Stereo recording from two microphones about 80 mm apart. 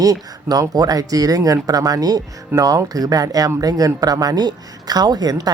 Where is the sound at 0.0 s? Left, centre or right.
Right.